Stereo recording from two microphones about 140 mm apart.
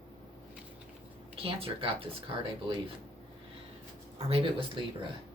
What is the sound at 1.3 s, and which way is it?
Speech, 45° right (ahead or behind).